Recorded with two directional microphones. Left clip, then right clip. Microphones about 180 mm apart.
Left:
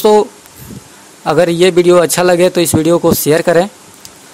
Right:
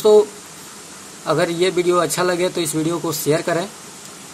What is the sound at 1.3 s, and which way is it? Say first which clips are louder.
A man's voice: left 8 dB; 50° left (ahead or behind).